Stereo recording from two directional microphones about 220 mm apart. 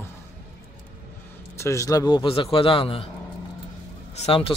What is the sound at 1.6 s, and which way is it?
A man's voice, 15° left (ahead or behind).